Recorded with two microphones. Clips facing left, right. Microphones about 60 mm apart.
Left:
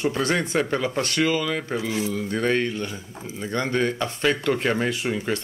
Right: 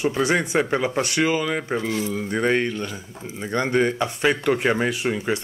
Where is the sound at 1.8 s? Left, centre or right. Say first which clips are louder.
Right 1 dB; centre.